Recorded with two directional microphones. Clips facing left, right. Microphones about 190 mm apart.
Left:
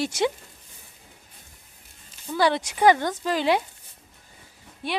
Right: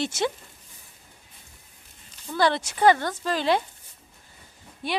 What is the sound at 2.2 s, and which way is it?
A woman's voice, 10° left (ahead or behind).